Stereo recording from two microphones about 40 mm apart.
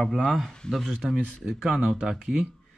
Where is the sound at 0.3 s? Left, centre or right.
Centre.